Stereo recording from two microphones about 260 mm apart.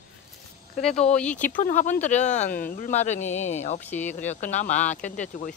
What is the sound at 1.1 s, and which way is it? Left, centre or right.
Speech, centre.